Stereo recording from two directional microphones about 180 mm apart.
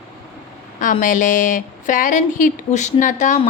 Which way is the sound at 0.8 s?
45° left (ahead or behind).